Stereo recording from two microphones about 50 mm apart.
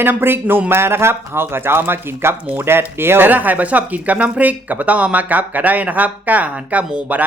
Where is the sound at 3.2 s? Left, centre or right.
Right.